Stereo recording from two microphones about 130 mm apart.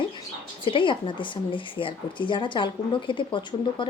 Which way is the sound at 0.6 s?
40° left (ahead or behind).